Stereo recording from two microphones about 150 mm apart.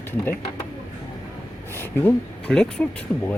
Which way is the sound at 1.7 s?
15° left (ahead or behind).